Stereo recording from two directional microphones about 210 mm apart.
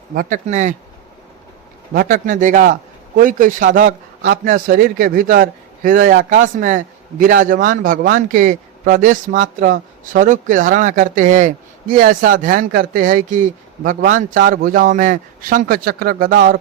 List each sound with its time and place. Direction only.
0.1 s speech: 40° right (ahead or behind)
1.9 s speech: 40° right (ahead or behind)